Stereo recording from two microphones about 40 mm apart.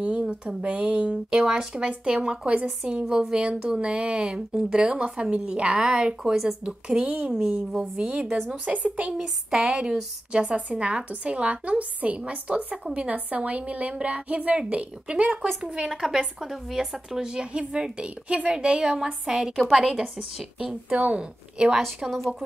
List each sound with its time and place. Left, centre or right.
0.0 s a woman's voice: right
0.7 s speech: right
1.3 s a woman's voice: centre
1.7 s speech: right
3.1 s a woman's voice: centre
3.3 s a woman's voice: right
9.1 s speech: centre
10.3 s a woman's voice: right
15.6 s a woman's voice: centre
19.5 s a woman's voice: centre
20.9 s a woman's voice: right
21.2 s speech: right